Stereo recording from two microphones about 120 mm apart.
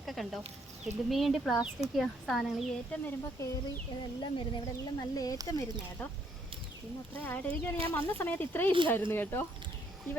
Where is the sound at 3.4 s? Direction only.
30° left (ahead or behind).